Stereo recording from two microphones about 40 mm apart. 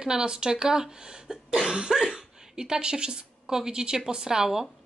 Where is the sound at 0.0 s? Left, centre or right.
Centre.